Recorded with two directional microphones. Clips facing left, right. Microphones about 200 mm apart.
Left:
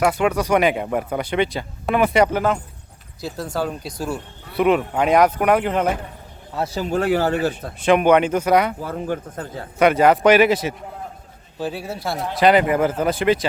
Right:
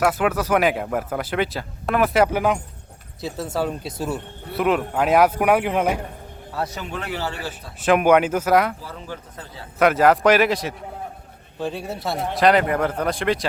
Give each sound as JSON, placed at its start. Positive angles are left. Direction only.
{"t": 0.0, "sound": "speech", "side_deg": -5}
{"t": 3.2, "sound": "a man's voice", "side_deg": 0}
{"t": 6.5, "sound": "speech", "side_deg": 25}
{"t": 6.9, "sound": "speech", "side_deg": 45}
{"t": 7.8, "sound": "speech", "side_deg": -5}
{"t": 8.8, "sound": "speech", "side_deg": 55}
{"t": 9.7, "sound": "speech", "side_deg": 0}